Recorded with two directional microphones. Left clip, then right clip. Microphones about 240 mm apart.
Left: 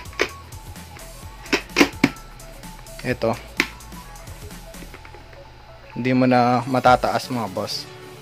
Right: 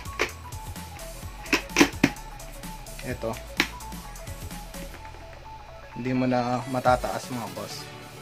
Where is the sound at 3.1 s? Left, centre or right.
Left.